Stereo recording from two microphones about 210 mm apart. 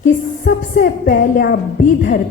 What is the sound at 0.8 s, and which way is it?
A man's voice, 45° left (ahead or behind).